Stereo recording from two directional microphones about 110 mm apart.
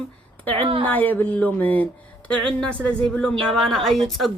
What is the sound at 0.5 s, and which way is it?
Speech, 55° right (ahead or behind).